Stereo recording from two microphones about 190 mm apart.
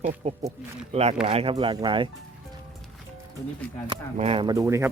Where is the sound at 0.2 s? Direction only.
35° right (ahead or behind).